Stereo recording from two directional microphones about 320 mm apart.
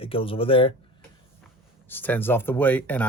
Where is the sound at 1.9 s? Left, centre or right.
Centre.